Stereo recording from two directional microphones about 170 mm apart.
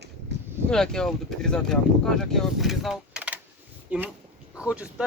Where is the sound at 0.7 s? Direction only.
5° left (ahead or behind).